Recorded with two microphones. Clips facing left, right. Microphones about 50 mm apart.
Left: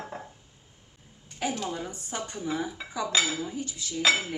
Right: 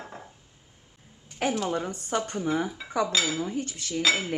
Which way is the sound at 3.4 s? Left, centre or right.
Right.